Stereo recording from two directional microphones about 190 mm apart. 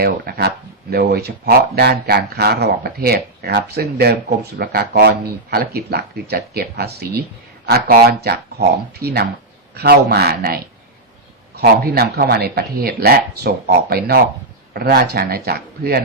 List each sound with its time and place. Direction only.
0.0 s speech: 55° right (ahead or behind)